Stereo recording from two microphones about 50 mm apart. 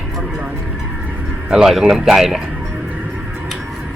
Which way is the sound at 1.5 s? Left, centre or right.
Centre.